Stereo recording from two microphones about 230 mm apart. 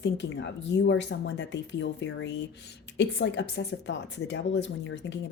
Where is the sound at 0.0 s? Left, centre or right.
Left.